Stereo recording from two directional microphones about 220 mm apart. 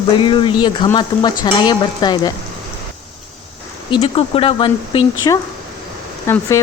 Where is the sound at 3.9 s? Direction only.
25° left (ahead or behind).